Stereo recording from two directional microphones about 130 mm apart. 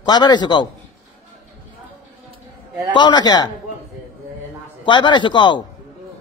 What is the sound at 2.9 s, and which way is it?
Speech, 35° left (ahead or behind).